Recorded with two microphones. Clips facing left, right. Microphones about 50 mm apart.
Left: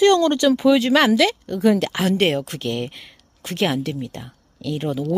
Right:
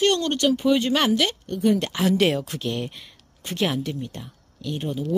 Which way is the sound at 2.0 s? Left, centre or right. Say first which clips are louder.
Left 1 dB; left.